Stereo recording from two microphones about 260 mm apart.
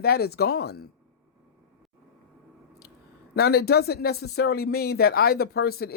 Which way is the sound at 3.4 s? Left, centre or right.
Left.